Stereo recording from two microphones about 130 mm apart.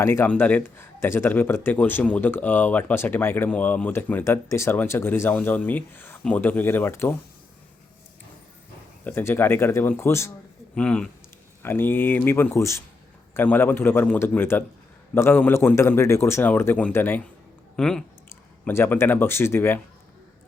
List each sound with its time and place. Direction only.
0.0 s a man's voice: 20° left (ahead or behind)
9.0 s a man's voice: 15° left (ahead or behind)
10.8 s a man's voice: 10° left (ahead or behind)
17.7 s speech: 5° left (ahead or behind)
18.3 s speech: 20° left (ahead or behind)